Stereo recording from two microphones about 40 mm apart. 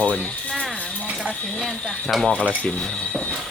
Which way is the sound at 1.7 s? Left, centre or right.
Centre.